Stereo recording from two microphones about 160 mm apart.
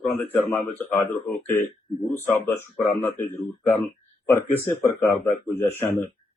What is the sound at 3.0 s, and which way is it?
Speech, 15° left (ahead or behind).